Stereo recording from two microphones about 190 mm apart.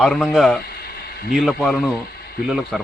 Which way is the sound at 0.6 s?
55° left (ahead or behind).